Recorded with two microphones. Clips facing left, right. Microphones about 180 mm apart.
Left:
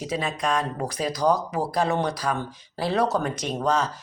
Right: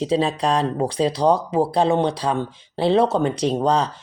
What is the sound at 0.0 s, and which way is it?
Speech, 30° right (ahead or behind).